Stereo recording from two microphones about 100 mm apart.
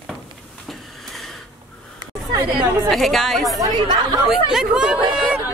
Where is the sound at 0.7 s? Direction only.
Centre (ahead or behind).